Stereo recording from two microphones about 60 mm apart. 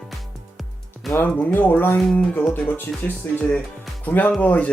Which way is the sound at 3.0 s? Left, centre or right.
Left.